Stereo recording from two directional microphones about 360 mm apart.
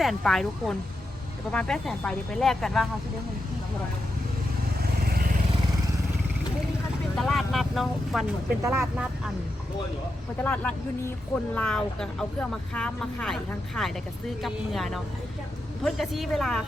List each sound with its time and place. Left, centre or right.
0.0 s speech: centre
4.9 s vehicle: right
7.2 s speech: centre
10.4 s speech: centre